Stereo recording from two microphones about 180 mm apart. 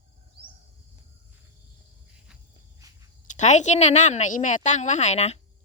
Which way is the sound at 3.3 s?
40° left (ahead or behind).